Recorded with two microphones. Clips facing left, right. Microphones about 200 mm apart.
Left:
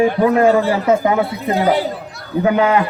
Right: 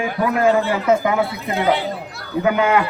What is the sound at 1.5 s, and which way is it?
A man's voice, 40° left (ahead or behind).